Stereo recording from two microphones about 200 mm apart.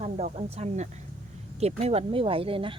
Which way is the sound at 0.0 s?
30° right (ahead or behind).